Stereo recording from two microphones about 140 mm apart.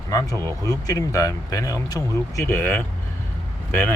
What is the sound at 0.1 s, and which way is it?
Speech, 25° left (ahead or behind).